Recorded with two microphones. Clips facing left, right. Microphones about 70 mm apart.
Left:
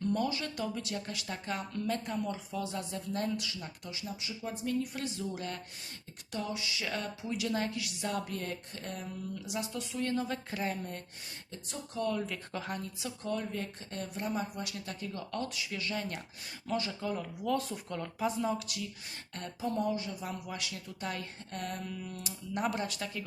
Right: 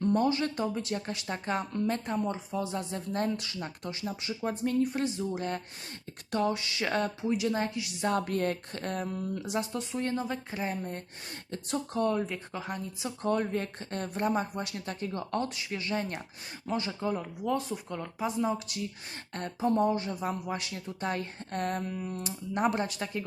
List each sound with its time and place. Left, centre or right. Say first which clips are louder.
0.0 s speech: right 6 dB; right
6.3 s speech: right 7 dB; right
8.2 s speech: right 8 dB; right; by 10.9 s centre
11.5 s speech: right 7 dB; right
12.0 s speech: right 2 dB; right
12.5 s speech: even; centre
13.2 s speech: right 7 dB; right; by 18.6 s centre
19.3 s speech: right 7 dB; right